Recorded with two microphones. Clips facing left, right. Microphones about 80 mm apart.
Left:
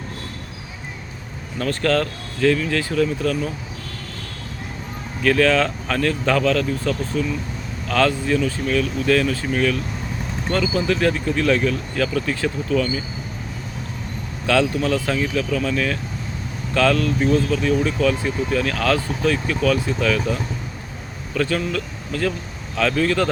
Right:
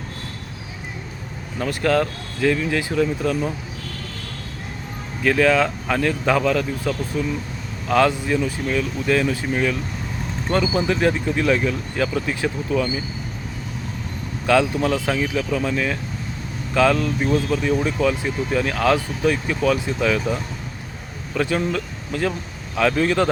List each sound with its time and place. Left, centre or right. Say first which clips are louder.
1.5 s speech: even; centre
5.2 s speech: even; centre
14.4 s speech: right 1 dB; centre